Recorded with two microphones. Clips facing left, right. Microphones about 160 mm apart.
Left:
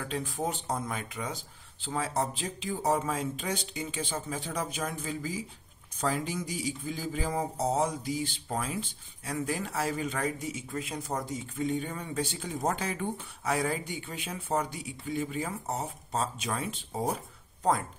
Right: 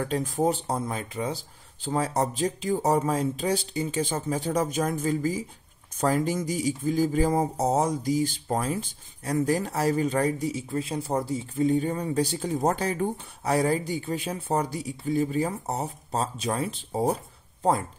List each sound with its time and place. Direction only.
0.0 s speech: 40° right (ahead or behind)